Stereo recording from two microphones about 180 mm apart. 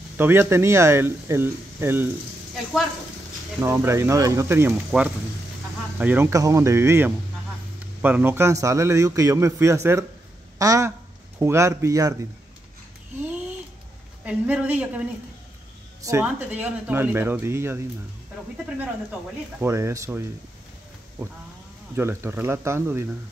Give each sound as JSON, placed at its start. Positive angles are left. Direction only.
{"t": 0.2, "sound": "a man's voice", "side_deg": -10}
{"t": 3.6, "sound": "a man's voice", "side_deg": -15}
{"t": 14.2, "sound": "a man's voice", "side_deg": -5}
{"t": 16.0, "sound": "a man's voice", "side_deg": -15}
{"t": 19.6, "sound": "a man's voice", "side_deg": -15}
{"t": 21.9, "sound": "a man's voice", "side_deg": -15}